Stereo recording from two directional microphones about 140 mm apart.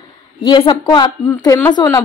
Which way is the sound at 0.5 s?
35° left (ahead or behind).